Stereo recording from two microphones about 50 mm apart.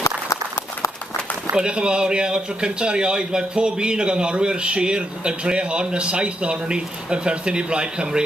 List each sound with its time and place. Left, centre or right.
1.6 s a man's voice: right